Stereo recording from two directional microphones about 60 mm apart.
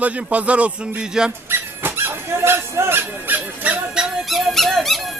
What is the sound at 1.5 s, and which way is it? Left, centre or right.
Dog, right.